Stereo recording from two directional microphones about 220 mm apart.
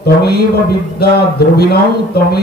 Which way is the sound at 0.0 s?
45° left (ahead or behind).